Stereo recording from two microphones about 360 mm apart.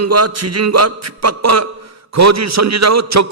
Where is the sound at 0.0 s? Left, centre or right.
Right.